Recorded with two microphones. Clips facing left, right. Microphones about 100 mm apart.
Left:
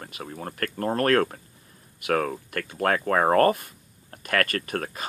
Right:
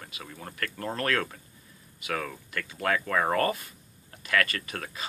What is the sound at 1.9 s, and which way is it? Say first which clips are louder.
Speech: left 8 dB; 60° left (ahead or behind).